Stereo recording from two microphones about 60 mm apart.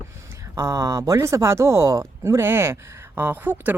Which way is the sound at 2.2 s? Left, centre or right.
Right.